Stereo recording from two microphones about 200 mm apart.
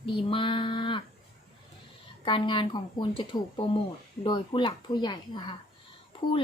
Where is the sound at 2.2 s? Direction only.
25° left (ahead or behind).